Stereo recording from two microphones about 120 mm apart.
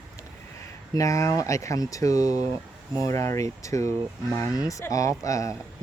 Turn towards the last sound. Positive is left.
turn(degrees=25)  # may be behind; listen again after turning